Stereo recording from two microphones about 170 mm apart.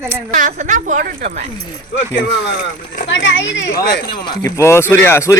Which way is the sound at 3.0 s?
90° left.